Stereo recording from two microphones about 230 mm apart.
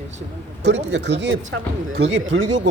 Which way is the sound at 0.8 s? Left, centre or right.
Right.